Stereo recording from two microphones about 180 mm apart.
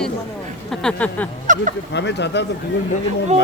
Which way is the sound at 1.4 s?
45° right (ahead or behind).